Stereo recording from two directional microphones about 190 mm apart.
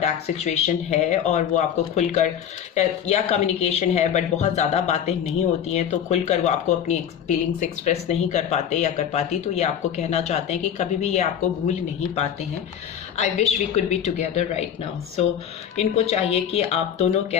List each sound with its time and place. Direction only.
0.0 s speech: 35° left (ahead or behind)
13.1 s speech: 35° left (ahead or behind)
15.7 s speech: 35° left (ahead or behind)